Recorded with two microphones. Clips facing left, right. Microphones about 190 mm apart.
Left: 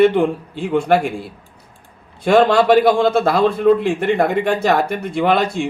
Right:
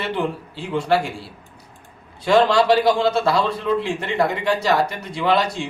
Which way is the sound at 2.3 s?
55° left (ahead or behind).